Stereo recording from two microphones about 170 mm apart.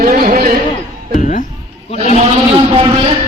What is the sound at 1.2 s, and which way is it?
Speech, 50° left (ahead or behind).